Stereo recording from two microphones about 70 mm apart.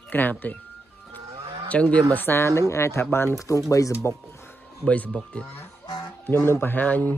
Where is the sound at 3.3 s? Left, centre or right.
Left.